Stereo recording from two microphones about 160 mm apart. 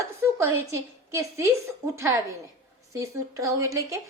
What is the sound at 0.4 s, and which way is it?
A woman's voice, 15° right (ahead or behind).